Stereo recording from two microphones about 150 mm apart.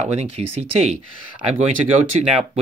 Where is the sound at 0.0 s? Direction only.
45° right (ahead or behind).